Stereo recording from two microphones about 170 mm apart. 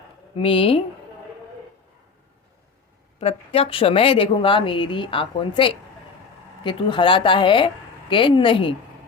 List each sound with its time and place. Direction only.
0.3 s a woman's voice: 30° left (ahead or behind)
3.2 s a woman's voice: 35° left (ahead or behind)